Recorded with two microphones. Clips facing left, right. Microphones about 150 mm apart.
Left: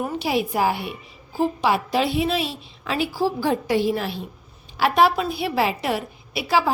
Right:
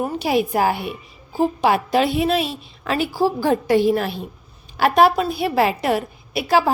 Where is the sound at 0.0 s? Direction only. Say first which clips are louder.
Right 3 dB; 45° right (ahead or behind).